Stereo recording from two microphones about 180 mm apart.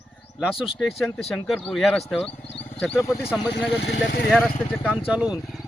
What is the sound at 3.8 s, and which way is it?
Speech, 60° left (ahead or behind).